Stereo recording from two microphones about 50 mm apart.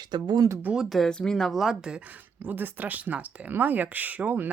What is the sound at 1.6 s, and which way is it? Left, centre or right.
Speech, centre.